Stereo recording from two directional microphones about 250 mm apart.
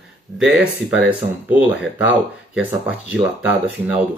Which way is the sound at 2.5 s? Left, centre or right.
Centre.